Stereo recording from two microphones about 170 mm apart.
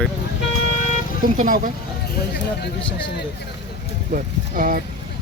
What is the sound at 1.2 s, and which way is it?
Speech, 55° right (ahead or behind).